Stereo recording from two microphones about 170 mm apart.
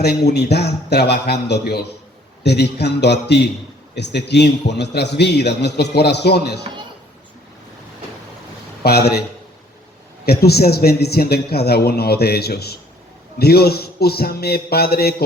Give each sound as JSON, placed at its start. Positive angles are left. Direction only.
{"t": 0.0, "sound": "a man's voice", "side_deg": 75}
{"t": 8.8, "sound": "a man's voice", "side_deg": 70}
{"t": 10.2, "sound": "a man's voice", "side_deg": 70}